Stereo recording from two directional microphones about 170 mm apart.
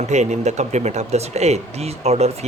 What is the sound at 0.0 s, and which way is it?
Speech, 45° right (ahead or behind).